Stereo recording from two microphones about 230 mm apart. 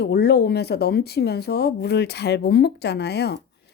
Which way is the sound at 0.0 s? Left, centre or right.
Left.